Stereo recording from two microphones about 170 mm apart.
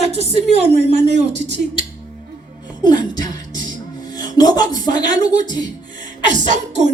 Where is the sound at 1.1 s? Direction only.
90° right.